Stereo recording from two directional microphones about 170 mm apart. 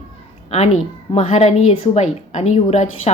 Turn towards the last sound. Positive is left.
turn(degrees=40)  # may be behind; listen again after turning